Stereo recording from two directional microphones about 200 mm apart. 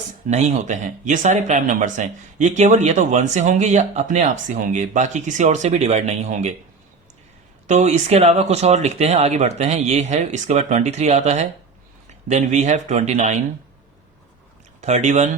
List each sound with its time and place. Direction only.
0.3 s speech: 35° right (ahead or behind)
7.7 s speech: 35° right (ahead or behind)
14.8 s speech: 35° right (ahead or behind)